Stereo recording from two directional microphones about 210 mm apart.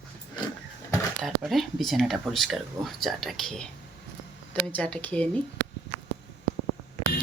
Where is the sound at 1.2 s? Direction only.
Centre (ahead or behind).